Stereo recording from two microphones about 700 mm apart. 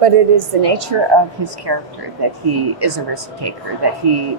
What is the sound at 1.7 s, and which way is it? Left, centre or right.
Speech, right.